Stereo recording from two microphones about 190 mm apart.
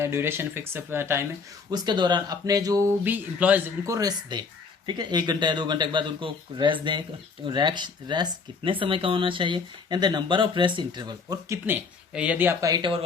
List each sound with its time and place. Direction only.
0.0 s speech: 10° right (ahead or behind)